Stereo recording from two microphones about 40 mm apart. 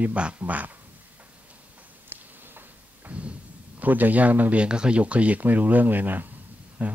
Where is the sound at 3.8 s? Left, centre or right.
Right.